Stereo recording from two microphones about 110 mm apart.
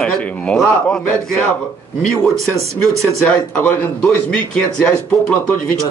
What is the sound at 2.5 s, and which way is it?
Speech, 30° right (ahead or behind).